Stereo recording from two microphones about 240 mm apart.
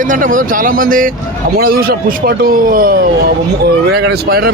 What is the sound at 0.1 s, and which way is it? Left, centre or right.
Speech, right.